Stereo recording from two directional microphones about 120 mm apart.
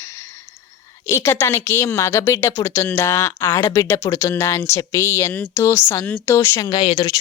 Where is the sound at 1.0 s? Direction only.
20° left (ahead or behind).